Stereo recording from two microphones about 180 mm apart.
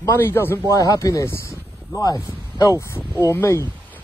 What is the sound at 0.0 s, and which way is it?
Speech, 15° left (ahead or behind).